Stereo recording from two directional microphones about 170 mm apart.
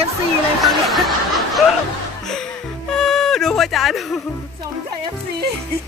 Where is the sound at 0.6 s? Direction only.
Centre (ahead or behind).